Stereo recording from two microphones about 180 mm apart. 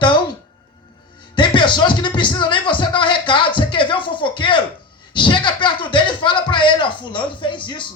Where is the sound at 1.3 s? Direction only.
25° left (ahead or behind).